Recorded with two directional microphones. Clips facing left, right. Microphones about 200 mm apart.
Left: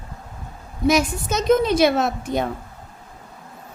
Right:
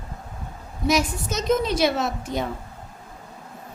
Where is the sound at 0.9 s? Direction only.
55° left (ahead or behind).